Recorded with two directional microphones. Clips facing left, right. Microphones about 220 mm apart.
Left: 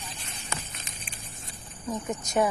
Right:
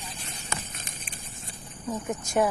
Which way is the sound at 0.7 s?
45° right (ahead or behind).